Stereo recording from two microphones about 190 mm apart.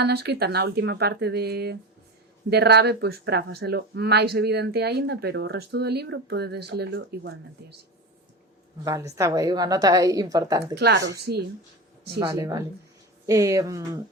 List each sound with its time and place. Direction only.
0.0 s speech: 60° right (ahead or behind)
8.8 s a woman's voice: 15° right (ahead or behind)
10.8 s speech: 60° right (ahead or behind)
12.3 s speech: 15° right (ahead or behind)